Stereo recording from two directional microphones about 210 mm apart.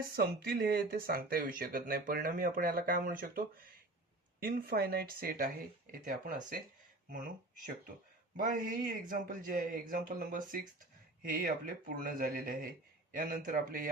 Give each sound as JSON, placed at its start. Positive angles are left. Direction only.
{"t": 0.0, "sound": "a man's voice", "side_deg": -45}